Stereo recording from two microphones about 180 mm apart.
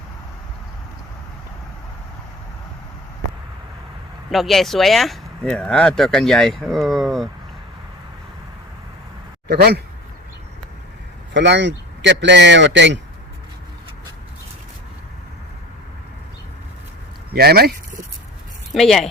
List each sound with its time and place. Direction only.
4.3 s speech: centre (ahead or behind)
9.5 s speech: 60° right (ahead or behind)
11.3 s speech: 75° right (ahead or behind)
17.3 s speech: 60° right (ahead or behind)
18.7 s speech: centre (ahead or behind)